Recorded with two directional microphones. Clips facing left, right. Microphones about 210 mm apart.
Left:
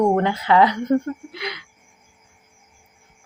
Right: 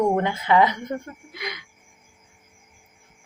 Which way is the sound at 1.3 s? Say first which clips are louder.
Left 3 dB; 50° right (ahead or behind).